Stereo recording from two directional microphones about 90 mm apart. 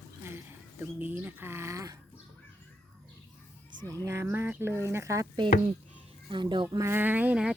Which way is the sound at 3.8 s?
40° right (ahead or behind).